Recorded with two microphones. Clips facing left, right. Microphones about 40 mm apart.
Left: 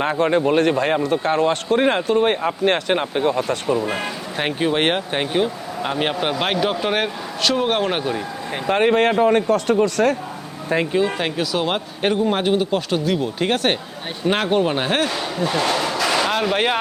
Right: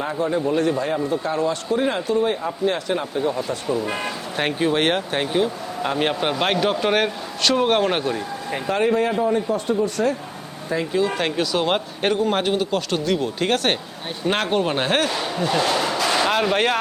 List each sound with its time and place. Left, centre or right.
0.0 s a man's voice: left
3.8 s a man's voice: centre
8.5 s a man's voice: left
11.2 s a man's voice: centre